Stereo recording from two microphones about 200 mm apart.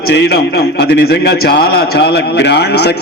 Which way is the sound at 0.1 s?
60° left (ahead or behind).